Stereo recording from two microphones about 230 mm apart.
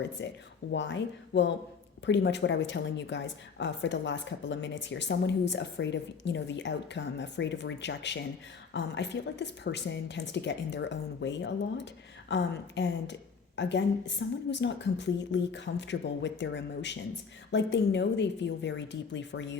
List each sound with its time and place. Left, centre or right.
0.2 s a woman's voice: left